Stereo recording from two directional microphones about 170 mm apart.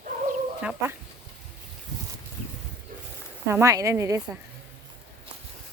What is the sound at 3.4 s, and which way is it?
Speech, 15° right (ahead or behind).